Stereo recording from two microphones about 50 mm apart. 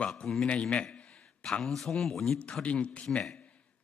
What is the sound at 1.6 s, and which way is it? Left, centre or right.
Speech, centre.